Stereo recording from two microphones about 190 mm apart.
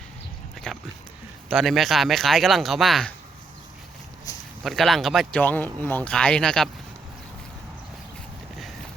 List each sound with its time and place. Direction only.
0.7 s dog: 5° left (ahead or behind)
1.5 s speech: centre (ahead or behind)
4.3 s a sound: 20° left (ahead or behind)
4.6 s speech: centre (ahead or behind)